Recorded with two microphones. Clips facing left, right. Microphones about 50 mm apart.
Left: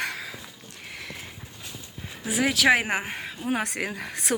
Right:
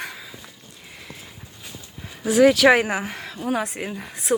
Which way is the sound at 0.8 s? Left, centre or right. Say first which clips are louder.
Left 4 dB; left.